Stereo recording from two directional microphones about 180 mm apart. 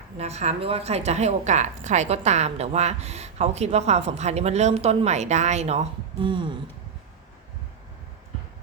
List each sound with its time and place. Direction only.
0.2 s a woman's voice: 35° right (ahead or behind)